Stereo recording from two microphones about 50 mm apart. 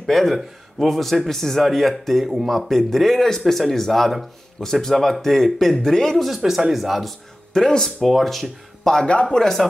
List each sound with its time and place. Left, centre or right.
0.0 s speech: centre
9.0 s speech: left
9.4 s speech: centre